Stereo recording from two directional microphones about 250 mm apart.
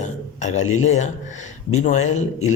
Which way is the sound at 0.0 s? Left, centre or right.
Left.